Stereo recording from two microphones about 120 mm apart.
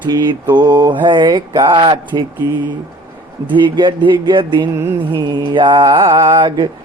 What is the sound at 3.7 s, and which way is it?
Mantra, 40° right (ahead or behind).